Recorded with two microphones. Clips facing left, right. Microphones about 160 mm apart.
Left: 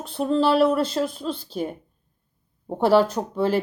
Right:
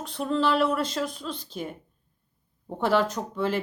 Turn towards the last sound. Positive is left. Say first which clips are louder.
# left 5 dB
turn(degrees=35)  # may be behind; listen again after turning